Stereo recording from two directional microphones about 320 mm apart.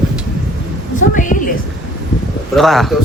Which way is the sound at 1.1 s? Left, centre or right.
Left.